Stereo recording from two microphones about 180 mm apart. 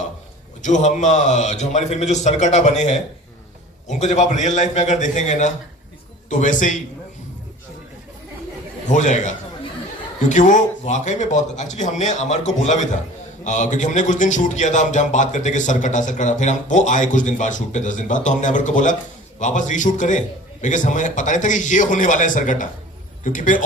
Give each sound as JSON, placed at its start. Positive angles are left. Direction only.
{"t": 0.6, "sound": "speech", "side_deg": 40}
{"t": 8.9, "sound": "speech", "side_deg": 45}